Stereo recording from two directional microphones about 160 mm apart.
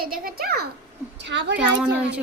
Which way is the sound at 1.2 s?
90° right.